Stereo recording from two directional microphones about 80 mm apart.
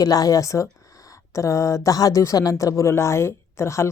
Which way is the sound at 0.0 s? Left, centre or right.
Left.